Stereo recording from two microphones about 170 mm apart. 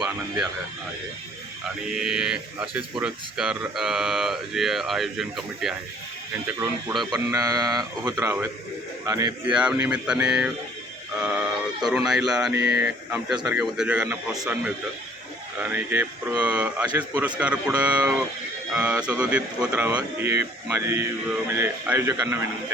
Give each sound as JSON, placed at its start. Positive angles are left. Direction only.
{"t": 2.0, "sound": "speech", "side_deg": -5}
{"t": 7.3, "sound": "speech", "side_deg": -20}
{"t": 9.5, "sound": "speech", "side_deg": -5}